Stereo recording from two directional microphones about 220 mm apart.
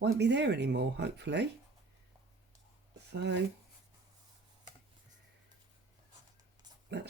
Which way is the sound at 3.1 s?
50° right (ahead or behind).